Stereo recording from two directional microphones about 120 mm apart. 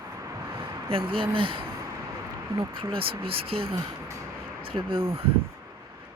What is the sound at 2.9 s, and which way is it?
Speech, 50° right (ahead or behind).